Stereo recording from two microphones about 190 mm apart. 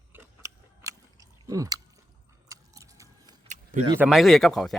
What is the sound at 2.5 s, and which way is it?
Chewing, 15° right (ahead or behind).